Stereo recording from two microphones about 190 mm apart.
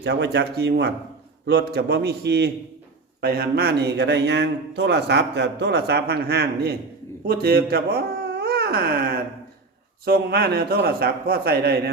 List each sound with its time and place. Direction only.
0.0 s a man's voice: 65° right (ahead or behind)